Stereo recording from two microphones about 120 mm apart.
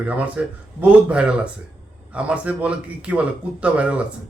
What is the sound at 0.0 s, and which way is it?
A man's voice, 10° right (ahead or behind).